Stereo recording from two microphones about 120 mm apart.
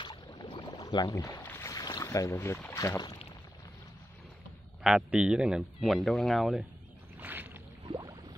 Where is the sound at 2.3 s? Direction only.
15° left (ahead or behind).